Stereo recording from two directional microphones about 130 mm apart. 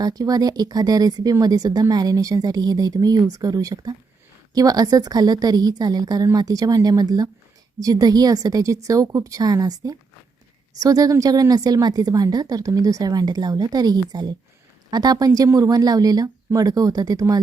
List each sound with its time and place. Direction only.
0.0 s speech: 30° right (ahead or behind)